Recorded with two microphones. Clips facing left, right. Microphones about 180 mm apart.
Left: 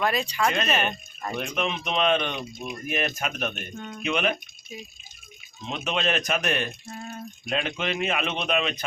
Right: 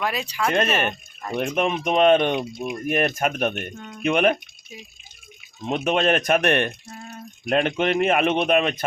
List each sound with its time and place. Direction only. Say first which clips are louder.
0.0 s speech: even; 5° right (ahead or behind)
1.4 s speech: right 7 dB; 50° right (ahead or behind)
2.4 s speech: right 7 dB; 60° right (ahead or behind)
3.8 s speech: left 1 dB; 5° right (ahead or behind)
4.0 s speech: right 7 dB; 55° right (ahead or behind)
5.6 s speech: right 7 dB; 55° right (ahead or behind)
6.9 s a sound: left 2 dB; 5° right (ahead or behind)
7.4 s speech: right 8 dB; 55° right (ahead or behind)